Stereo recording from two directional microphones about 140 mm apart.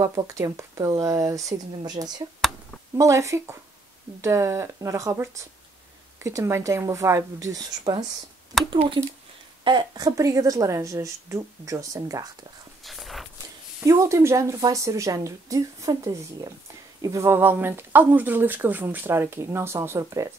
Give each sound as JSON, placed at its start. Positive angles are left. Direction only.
{"t": 0.0, "sound": "a woman's voice", "side_deg": -20}
{"t": 12.8, "sound": "a sound", "side_deg": 0}
{"t": 13.8, "sound": "a woman's voice", "side_deg": -20}